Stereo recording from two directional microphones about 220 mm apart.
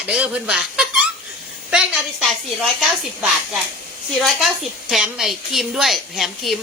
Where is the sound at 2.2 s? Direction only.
Centre (ahead or behind).